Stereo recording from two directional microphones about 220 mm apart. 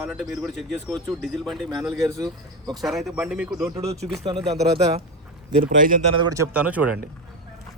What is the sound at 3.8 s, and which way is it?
Speech, 30° right (ahead or behind).